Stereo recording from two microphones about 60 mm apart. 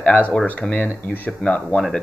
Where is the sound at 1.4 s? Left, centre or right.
Centre.